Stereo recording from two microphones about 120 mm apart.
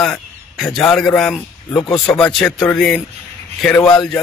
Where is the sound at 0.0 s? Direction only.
5° left (ahead or behind).